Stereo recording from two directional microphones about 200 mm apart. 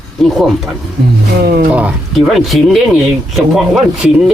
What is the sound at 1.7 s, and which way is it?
Speech, 5° right (ahead or behind).